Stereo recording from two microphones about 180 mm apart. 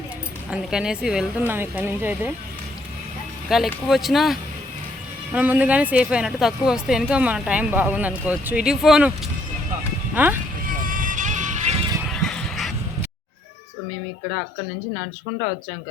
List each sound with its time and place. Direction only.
0.5 s a woman's voice: 5° right (ahead or behind)
3.7 s a woman's voice: centre (ahead or behind)
10.2 s a woman's voice: 10° right (ahead or behind)
10.7 s music: 50° right (ahead or behind)
12.1 s a sound: 5° left (ahead or behind)